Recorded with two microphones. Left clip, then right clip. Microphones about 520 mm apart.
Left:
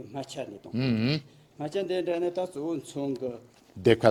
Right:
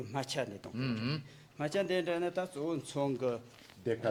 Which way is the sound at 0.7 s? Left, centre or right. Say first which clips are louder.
Left 9 dB; left.